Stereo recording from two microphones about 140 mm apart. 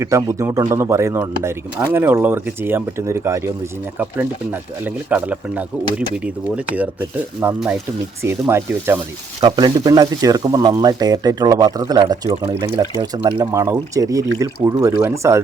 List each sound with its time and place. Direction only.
0.0 s speech: 20° right (ahead or behind)
8.2 s speech: 15° right (ahead or behind)
9.4 s speech: 30° right (ahead or behind)